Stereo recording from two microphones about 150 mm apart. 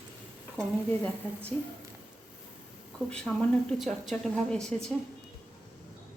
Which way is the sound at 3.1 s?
5° left (ahead or behind).